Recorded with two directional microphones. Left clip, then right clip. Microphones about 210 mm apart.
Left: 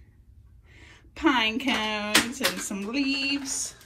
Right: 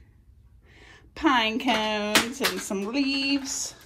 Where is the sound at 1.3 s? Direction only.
45° right (ahead or behind).